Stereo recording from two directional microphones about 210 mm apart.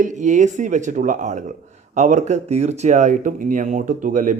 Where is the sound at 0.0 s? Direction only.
35° right (ahead or behind).